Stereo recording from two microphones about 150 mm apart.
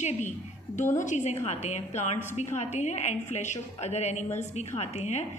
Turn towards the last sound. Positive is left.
turn(degrees=50)  # may be behind; listen again after turning